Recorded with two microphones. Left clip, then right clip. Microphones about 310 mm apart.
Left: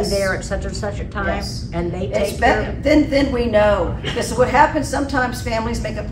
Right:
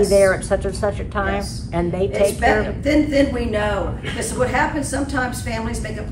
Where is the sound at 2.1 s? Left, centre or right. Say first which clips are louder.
Left 1 dB; centre.